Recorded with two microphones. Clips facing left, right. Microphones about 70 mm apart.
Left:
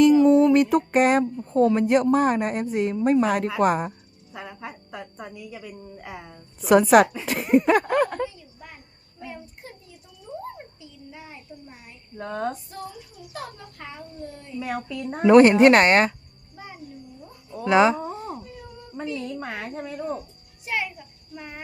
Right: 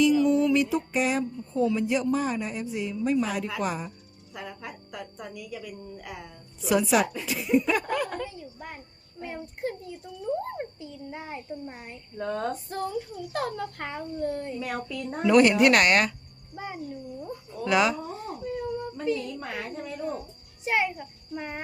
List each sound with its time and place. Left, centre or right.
0.0 s music: left
1.5 s a woman's voice: left
4.4 s a woman's voice: left
6.6 s a woman's voice: left
8.3 s a sound: right
9.2 s a child's voice: right
12.1 s a sound: centre
12.7 s a child's voice: right
14.6 s a sound: centre
15.1 s a woman's voice: left
17.6 s a woman's voice: left
20.7 s a child's voice: right